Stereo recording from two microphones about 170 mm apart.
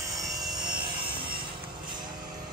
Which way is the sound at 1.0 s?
30° right (ahead or behind).